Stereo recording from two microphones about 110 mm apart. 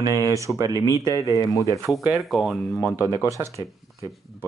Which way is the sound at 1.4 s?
30° left (ahead or behind).